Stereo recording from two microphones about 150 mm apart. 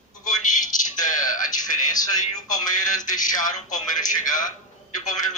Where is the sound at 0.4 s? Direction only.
60° left (ahead or behind).